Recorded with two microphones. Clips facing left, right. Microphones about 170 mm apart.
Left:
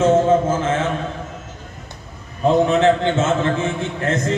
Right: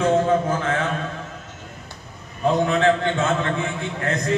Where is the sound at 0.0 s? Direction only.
25° left (ahead or behind).